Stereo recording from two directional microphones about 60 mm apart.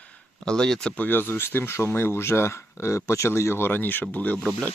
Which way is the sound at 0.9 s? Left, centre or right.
Left.